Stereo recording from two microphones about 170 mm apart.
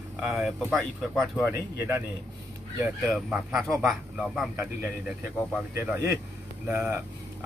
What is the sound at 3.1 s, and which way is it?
Speech, 5° right (ahead or behind).